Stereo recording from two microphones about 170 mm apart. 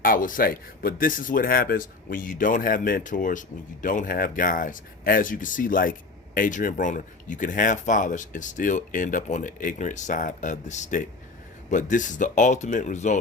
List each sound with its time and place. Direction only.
0.0 s speech: 55° left (ahead or behind)